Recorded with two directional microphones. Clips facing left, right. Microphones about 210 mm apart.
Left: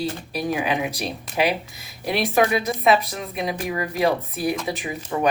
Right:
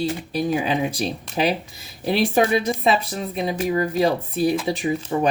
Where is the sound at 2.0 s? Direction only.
30° right (ahead or behind).